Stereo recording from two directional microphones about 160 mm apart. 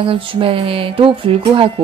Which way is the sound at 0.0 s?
35° right (ahead or behind).